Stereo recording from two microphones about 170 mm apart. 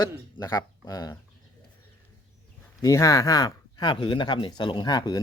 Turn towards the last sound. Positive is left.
turn(degrees=25)  # may be behind; listen again after turning